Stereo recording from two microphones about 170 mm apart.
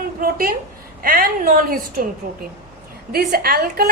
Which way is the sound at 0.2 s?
60° right (ahead or behind).